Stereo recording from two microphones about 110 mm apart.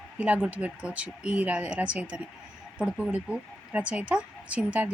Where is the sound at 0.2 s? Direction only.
10° right (ahead or behind).